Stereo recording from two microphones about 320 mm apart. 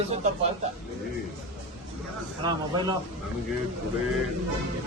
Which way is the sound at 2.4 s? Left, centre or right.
Centre.